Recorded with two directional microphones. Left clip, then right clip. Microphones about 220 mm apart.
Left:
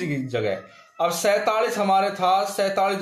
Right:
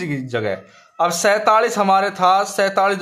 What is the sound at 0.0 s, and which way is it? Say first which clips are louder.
Speech: right 3 dB; 25° right (ahead or behind).